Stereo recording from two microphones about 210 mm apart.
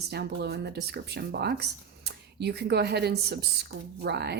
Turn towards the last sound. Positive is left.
turn(degrees=-50)  # may be behind; listen again after turning